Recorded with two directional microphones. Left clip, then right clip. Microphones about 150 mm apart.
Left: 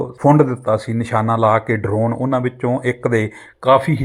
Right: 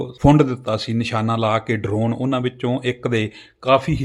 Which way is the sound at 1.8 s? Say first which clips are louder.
Left 4 dB; 25° right (ahead or behind).